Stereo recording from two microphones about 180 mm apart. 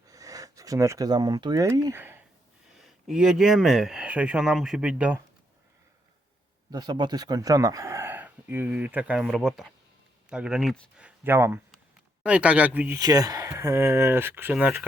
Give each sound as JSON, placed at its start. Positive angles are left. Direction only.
{"t": 0.1, "sound": "speech", "side_deg": -20}
{"t": 6.7, "sound": "speech", "side_deg": -20}
{"t": 13.0, "sound": "speech", "side_deg": -20}